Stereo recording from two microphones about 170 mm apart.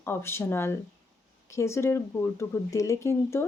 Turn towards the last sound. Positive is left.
turn(degrees=15)  # may be behind; listen again after turning